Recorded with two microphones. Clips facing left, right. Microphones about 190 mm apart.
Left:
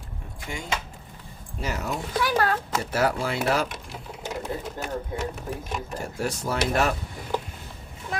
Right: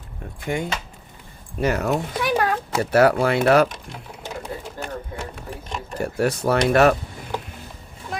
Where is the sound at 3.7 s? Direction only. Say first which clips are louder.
Even; 5° left (ahead or behind).